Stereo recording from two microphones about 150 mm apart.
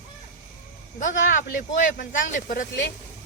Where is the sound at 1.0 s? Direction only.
60° left (ahead or behind).